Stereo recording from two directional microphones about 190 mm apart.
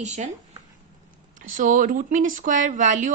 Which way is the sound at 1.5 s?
45° right (ahead or behind).